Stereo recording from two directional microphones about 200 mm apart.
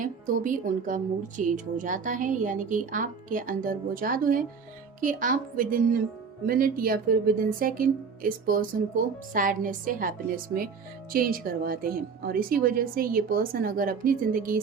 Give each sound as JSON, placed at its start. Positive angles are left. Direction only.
{"t": 0.0, "sound": "a woman's voice", "side_deg": -40}